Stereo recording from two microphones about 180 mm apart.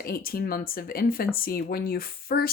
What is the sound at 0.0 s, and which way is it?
Speech, 55° left (ahead or behind).